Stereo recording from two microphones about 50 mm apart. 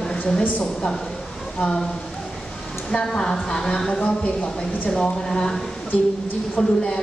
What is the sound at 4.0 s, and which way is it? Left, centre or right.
Speech, left.